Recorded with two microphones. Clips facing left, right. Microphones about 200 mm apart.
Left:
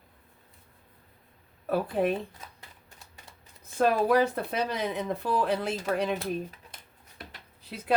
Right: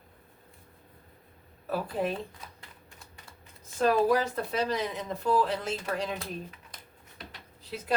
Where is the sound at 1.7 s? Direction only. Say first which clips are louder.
Left 4 dB; 55° left (ahead or behind).